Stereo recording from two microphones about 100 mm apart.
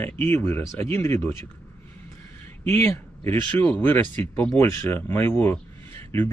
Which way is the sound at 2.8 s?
25° left (ahead or behind).